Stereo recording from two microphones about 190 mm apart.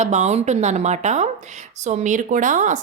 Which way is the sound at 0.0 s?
35° right (ahead or behind).